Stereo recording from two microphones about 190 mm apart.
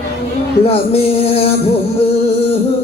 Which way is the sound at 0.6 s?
30° left (ahead or behind).